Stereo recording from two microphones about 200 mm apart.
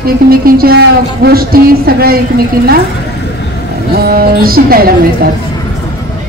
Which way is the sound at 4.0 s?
50° right (ahead or behind).